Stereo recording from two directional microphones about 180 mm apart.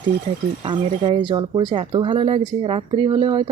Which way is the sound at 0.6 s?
25° right (ahead or behind).